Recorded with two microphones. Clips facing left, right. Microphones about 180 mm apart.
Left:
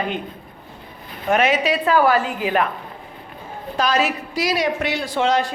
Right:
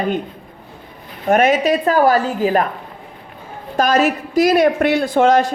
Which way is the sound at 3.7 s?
50° right (ahead or behind).